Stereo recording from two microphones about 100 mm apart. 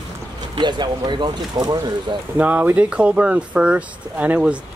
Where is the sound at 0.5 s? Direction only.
50° right (ahead or behind).